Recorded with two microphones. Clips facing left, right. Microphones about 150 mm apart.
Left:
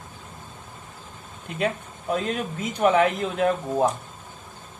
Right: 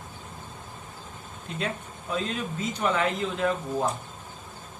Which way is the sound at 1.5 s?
60° left (ahead or behind).